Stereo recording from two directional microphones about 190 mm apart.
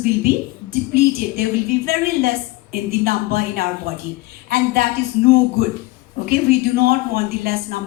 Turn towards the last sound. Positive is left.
turn(degrees=-50)  # may be behind; listen again after turning